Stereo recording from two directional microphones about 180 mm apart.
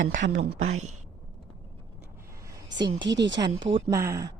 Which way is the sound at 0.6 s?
40° right (ahead or behind).